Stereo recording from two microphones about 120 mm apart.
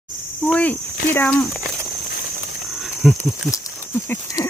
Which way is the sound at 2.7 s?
Centre (ahead or behind).